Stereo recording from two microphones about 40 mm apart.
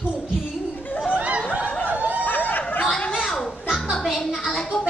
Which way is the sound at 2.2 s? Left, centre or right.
Left.